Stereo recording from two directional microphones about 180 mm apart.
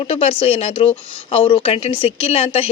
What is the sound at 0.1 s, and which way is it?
Speech, 30° left (ahead or behind).